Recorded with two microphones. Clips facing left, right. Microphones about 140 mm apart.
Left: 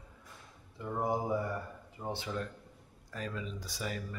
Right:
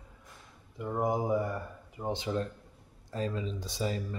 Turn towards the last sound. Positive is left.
turn(degrees=-25)  # may be behind; listen again after turning